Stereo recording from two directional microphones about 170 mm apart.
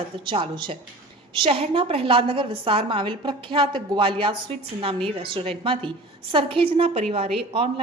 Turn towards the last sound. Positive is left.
turn(degrees=-35)  # may be behind; listen again after turning